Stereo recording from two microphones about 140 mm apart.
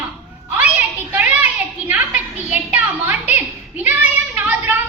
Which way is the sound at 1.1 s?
10° right (ahead or behind).